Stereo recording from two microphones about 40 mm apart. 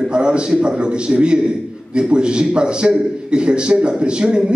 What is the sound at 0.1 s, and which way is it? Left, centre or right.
A man's voice, right.